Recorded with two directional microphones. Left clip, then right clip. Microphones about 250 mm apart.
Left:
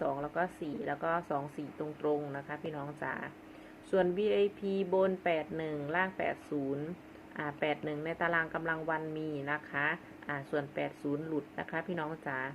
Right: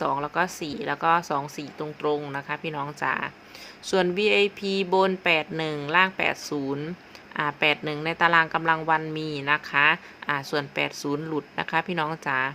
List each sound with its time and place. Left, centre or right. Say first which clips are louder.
0.0 s a woman's voice: right 9 dB; right